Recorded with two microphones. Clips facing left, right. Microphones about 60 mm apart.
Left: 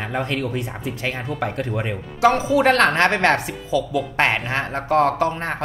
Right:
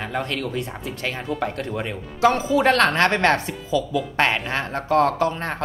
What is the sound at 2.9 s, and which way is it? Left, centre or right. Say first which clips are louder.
Speech: left 1 dB; left.